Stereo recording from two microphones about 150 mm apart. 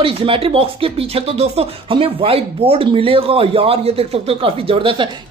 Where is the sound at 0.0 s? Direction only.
35° right (ahead or behind).